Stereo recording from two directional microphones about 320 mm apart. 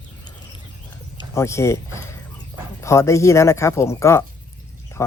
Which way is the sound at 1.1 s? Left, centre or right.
Centre.